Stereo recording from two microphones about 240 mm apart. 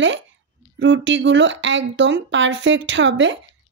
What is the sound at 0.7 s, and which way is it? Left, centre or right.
A woman's voice, right.